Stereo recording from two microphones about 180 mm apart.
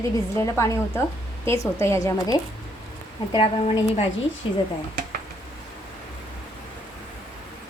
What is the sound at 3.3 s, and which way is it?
A woman's voice, 30° left (ahead or behind).